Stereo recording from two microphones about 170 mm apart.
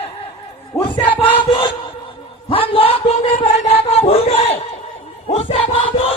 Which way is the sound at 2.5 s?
30° left (ahead or behind).